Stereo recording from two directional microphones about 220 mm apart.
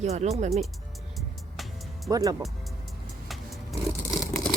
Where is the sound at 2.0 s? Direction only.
15° right (ahead or behind).